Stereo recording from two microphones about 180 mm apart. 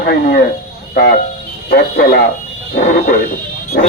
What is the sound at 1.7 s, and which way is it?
Speech, 65° left (ahead or behind).